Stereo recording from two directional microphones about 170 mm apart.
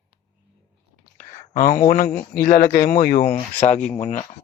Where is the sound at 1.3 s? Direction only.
50° left (ahead or behind).